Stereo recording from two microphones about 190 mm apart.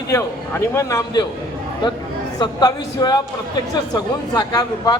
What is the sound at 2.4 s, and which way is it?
A man's voice, 20° left (ahead or behind).